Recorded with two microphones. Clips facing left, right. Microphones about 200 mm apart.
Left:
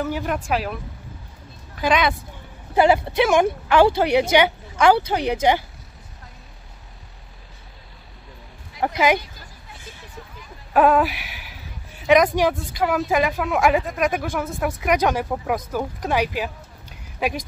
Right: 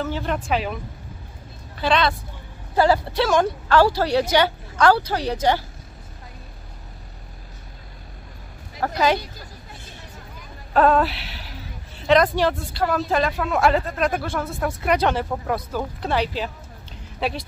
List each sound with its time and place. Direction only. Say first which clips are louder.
0.0 s speech: left 1 dB; 10° left (ahead or behind)
1.8 s a woman's voice: left 1 dB; 15° left (ahead or behind)
8.8 s speech: left 1 dB; 15° left (ahead or behind)
10.7 s speech: left 1 dB; 10° left (ahead or behind)